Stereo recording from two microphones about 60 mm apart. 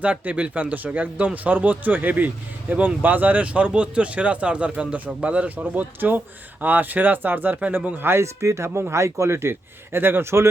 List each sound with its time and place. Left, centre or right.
0.0 s a man's voice: right
6.0 s speech: right
8.0 s speech: right